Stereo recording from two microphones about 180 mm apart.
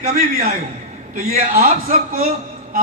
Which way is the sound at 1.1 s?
50° right (ahead or behind).